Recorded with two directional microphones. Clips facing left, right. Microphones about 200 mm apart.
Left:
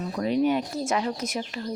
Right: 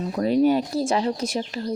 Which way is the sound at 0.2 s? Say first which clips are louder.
Right 4 dB; 35° right (ahead or behind).